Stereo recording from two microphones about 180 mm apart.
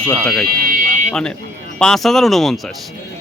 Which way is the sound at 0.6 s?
50° right (ahead or behind).